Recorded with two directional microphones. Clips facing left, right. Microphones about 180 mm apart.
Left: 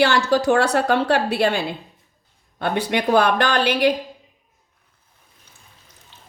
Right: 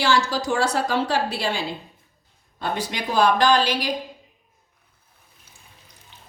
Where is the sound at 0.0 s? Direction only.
60° left (ahead or behind).